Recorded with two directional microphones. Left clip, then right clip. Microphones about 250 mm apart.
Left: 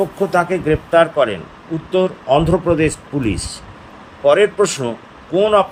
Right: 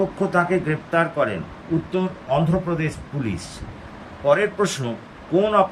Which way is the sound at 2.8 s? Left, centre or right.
Left.